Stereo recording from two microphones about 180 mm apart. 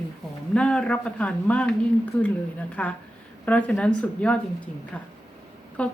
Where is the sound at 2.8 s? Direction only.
10° left (ahead or behind).